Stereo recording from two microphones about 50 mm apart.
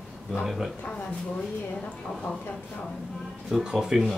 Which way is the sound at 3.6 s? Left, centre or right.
Centre.